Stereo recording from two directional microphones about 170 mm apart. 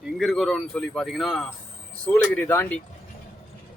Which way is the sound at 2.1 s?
10° left (ahead or behind).